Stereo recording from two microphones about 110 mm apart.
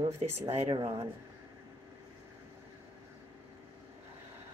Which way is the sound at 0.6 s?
40° right (ahead or behind).